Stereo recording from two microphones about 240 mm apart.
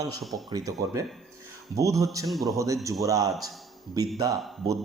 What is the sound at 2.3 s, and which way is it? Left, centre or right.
Speech, centre.